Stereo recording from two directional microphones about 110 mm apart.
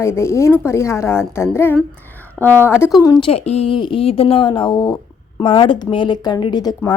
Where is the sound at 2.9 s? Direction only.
35° left (ahead or behind).